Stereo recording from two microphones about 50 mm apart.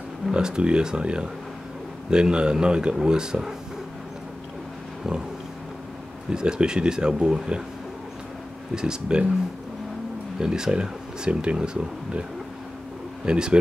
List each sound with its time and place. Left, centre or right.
0.3 s speech: centre
6.3 s speech: centre
8.7 s speech: centre
10.4 s speech: centre
13.2 s speech: centre